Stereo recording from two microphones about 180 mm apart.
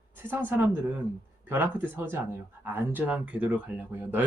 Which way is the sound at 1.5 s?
10° right (ahead or behind).